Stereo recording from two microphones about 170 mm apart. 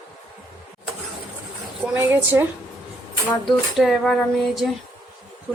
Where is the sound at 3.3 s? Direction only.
Centre (ahead or behind).